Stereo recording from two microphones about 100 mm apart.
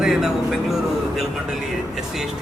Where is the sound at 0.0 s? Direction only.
5° right (ahead or behind).